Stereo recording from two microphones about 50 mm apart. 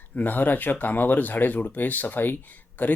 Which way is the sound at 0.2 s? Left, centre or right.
Left.